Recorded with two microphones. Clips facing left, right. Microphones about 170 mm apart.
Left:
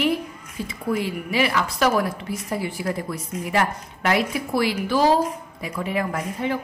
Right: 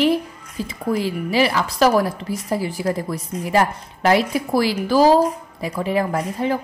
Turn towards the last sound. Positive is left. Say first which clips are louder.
# right 4 dB
turn(degrees=-35)  # may be behind; listen again after turning